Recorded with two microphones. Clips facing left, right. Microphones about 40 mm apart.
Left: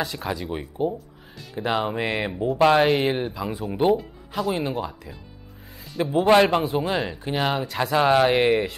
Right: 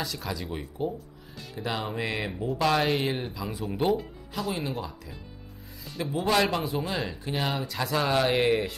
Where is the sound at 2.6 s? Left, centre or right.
Left.